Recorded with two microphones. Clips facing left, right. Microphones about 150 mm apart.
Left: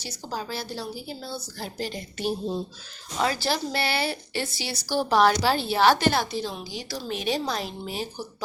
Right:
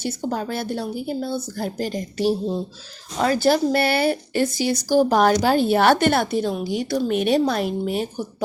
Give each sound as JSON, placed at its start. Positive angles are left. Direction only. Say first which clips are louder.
{"t": 0.0, "sound": "speech", "louder": "right 9 dB", "side_deg": -55}
{"t": 3.2, "sound": "speech", "louder": "right 8 dB", "side_deg": -45}